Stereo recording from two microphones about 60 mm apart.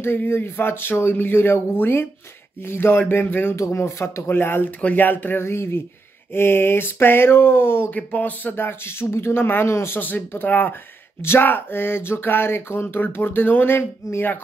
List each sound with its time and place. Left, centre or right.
0.0 s speech: left
3.5 s speech: left
5.4 s speech: left
7.9 s speech: left
9.9 s speech: left